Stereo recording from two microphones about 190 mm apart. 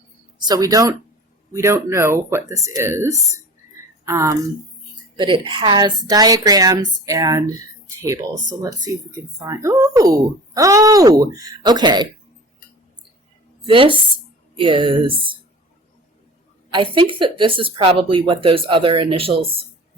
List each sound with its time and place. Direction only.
0.3 s speech: 20° right (ahead or behind)
9.4 s speech: 15° right (ahead or behind)
13.7 s speech: 25° right (ahead or behind)
16.7 s speech: 25° right (ahead or behind)